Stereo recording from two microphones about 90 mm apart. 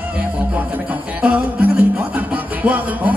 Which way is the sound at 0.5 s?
15° right (ahead or behind).